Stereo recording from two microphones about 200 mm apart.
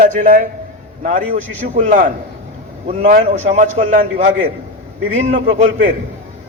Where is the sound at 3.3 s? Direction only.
40° right (ahead or behind).